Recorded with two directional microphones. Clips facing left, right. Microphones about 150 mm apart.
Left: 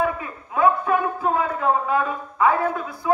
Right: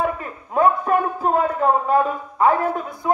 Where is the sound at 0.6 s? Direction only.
40° right (ahead or behind).